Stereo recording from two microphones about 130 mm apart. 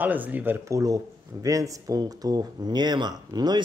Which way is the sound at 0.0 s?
15° right (ahead or behind).